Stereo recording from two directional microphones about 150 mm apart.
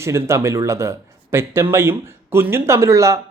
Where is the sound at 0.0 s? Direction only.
20° right (ahead or behind).